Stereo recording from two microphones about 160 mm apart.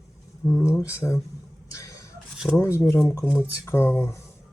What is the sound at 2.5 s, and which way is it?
Speech, 15° left (ahead or behind).